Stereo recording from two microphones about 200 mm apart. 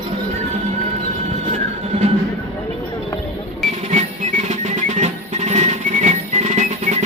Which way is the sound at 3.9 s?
35° right (ahead or behind).